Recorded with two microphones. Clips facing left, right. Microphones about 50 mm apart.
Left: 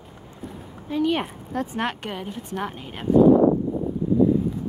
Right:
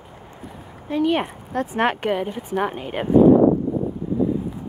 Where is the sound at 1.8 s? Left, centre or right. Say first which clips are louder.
Right 7 dB; centre.